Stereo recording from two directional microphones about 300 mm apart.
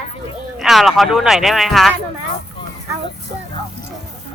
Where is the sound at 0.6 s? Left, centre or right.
Centre.